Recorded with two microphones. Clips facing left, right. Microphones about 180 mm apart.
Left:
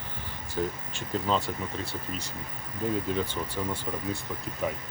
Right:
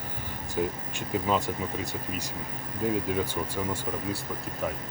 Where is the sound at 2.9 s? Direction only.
10° right (ahead or behind).